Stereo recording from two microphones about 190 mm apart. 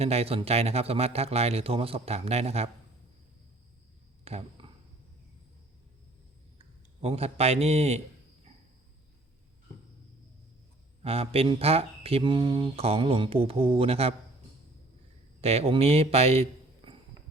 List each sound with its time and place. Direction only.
0.0 s speech: 30° right (ahead or behind)
4.2 s a sound: 35° right (ahead or behind)
7.0 s speech: 35° right (ahead or behind)
11.0 s speech: 30° right (ahead or behind)
15.4 s a man's voice: 30° right (ahead or behind)